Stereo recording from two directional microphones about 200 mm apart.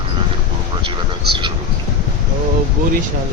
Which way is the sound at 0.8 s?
25° right (ahead or behind).